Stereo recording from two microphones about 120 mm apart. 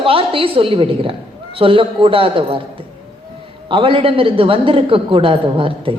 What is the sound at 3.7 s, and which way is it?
A woman's voice, 45° right (ahead or behind).